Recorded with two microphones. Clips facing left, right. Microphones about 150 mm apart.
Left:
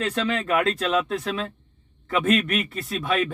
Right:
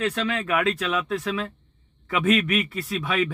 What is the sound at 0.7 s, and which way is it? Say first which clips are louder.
Speech: left 2 dB; 40° left (ahead or behind).